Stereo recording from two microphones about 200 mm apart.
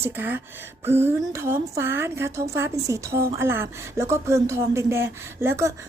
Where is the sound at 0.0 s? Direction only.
10° right (ahead or behind).